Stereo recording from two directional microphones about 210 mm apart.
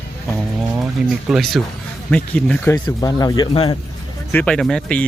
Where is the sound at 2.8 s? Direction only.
20° left (ahead or behind).